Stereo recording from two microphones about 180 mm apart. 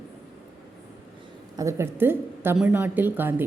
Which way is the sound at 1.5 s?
15° right (ahead or behind).